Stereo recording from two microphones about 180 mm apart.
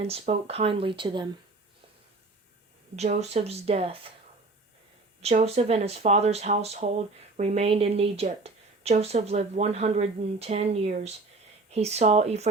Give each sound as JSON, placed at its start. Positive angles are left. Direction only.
{"t": 0.0, "sound": "speech", "side_deg": -35}
{"t": 2.9, "sound": "a woman's voice", "side_deg": -40}
{"t": 5.2, "sound": "a woman's voice", "side_deg": -35}